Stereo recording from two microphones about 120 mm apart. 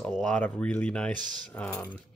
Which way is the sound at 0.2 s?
10° left (ahead or behind).